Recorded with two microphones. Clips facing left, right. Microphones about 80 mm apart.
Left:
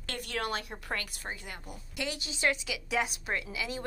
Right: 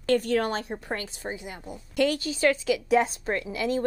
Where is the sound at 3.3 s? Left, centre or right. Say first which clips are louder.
Right 8 dB; right.